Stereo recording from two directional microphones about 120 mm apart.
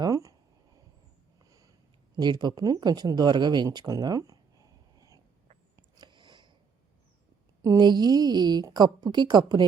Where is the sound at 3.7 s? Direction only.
30° right (ahead or behind).